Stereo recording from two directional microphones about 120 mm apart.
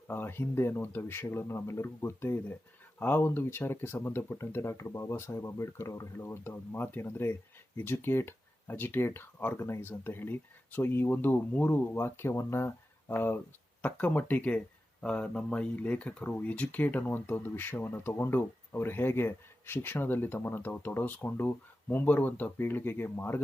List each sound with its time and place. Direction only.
0.1 s speech: 20° left (ahead or behind)